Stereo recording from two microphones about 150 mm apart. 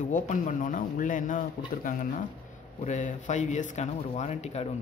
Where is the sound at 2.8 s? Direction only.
55° left (ahead or behind).